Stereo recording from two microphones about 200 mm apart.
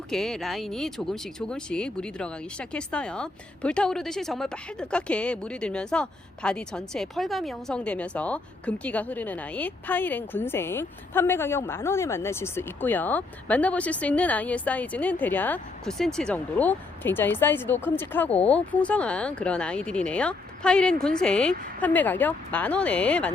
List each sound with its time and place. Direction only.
0.1 s speech: centre (ahead or behind)